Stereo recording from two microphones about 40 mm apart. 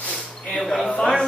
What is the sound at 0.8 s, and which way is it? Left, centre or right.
Speech, left.